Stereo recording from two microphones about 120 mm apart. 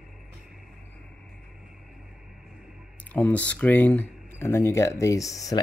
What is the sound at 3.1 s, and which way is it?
Speech, 15° left (ahead or behind).